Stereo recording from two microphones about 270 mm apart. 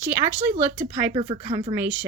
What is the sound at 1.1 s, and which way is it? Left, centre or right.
Speech, centre.